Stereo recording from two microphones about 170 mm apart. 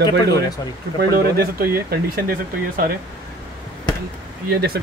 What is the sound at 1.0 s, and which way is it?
Speech, 65° right (ahead or behind).